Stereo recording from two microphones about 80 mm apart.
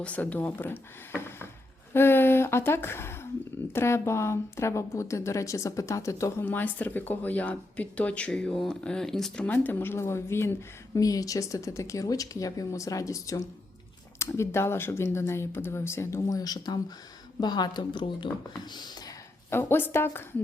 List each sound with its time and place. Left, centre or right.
0.0 s a woman's voice: centre; by 6.4 s left
6.4 s speech: left; by 9.5 s centre
9.5 s a woman's voice: left
11.0 s a woman's voice: left
16.2 s speech: left
18.5 s speech: left
19.5 s speech: left